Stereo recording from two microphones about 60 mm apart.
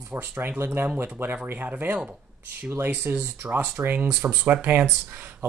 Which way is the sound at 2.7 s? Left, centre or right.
Right.